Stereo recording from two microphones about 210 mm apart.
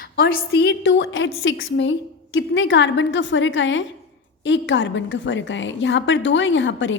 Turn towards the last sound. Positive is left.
turn(degrees=60)  # may be behind; listen again after turning